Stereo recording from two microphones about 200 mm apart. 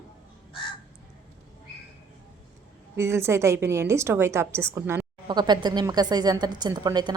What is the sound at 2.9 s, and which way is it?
A woman's voice, 15° right (ahead or behind).